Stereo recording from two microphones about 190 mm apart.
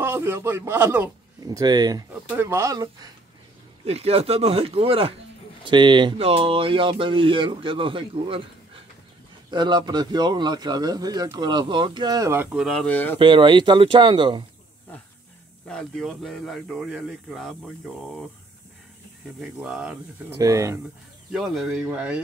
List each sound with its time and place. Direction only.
0.0 s a man's voice: 15° right (ahead or behind)
3.8 s speech: 35° right (ahead or behind); by 12.6 s 15° right (ahead or behind)
12.6 s speech: 5° left (ahead or behind)
13.2 s speech: 25° right (ahead or behind)
15.7 s speech: centre (ahead or behind)
19.6 s speech: 5° right (ahead or behind)
20.3 s a man's voice: 15° right (ahead or behind)
21.3 s speech: centre (ahead or behind)